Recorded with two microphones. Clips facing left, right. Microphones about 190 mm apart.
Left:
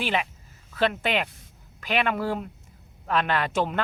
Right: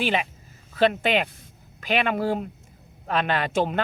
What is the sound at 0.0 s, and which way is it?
Speech, 20° right (ahead or behind).